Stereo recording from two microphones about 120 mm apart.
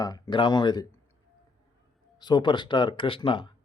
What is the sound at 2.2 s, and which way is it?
Speech, 40° left (ahead or behind).